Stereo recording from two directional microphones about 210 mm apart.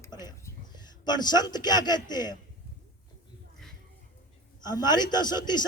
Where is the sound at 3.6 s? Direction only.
5° left (ahead or behind).